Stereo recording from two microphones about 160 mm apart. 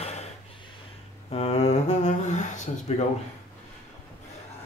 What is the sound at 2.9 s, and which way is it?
Speech, 40° left (ahead or behind).